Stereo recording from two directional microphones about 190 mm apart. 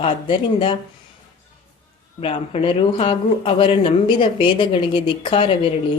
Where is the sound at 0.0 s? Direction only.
30° left (ahead or behind).